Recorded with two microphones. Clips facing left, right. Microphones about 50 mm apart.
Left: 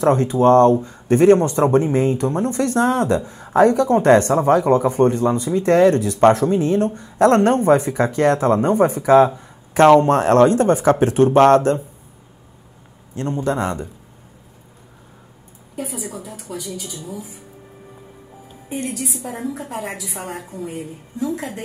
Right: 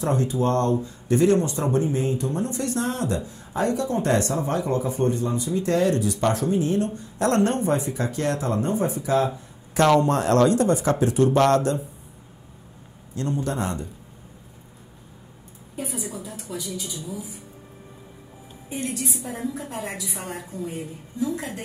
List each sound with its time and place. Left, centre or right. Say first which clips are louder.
0.0 s speech: left 8 dB; left
8.7 s speech: left 11 dB; left
13.1 s speech: left 5 dB; left
16.3 s speech: left 2 dB; left
19.2 s a woman's voice: left 4 dB; centre
20.5 s speech: left 1 dB; left